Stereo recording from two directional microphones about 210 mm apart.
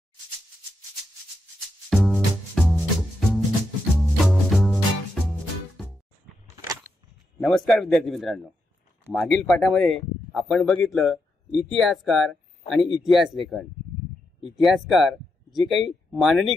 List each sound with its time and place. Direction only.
1.9 s music: centre (ahead or behind)
6.5 s a sound: 15° right (ahead or behind)
7.3 s speech: centre (ahead or behind)